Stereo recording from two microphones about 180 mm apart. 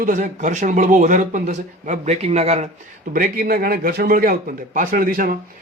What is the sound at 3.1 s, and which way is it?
A man's voice, 55° right (ahead or behind).